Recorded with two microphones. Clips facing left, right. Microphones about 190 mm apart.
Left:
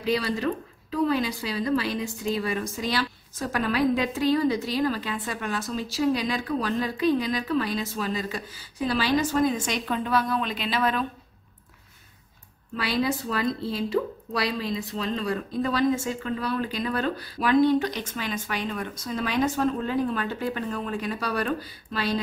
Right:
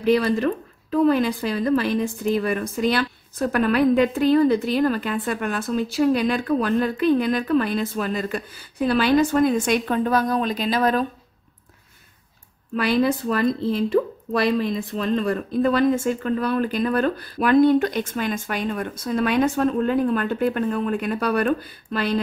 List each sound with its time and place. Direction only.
0.0 s a woman's voice: 55° right (ahead or behind)
12.7 s a woman's voice: 55° right (ahead or behind)